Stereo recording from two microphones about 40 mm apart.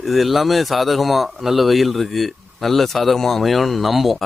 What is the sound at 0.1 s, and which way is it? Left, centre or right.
A man's voice, centre.